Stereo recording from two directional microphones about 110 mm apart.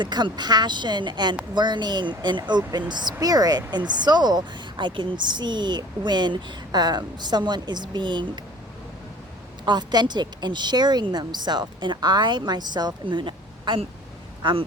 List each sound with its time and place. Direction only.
0.0 s speech: 40° right (ahead or behind)
9.6 s speech: 40° right (ahead or behind)